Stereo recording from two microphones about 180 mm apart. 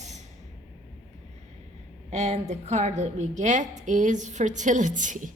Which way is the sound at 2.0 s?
40° right (ahead or behind).